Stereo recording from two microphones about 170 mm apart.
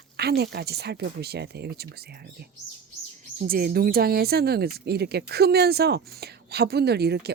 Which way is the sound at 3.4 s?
60° right (ahead or behind).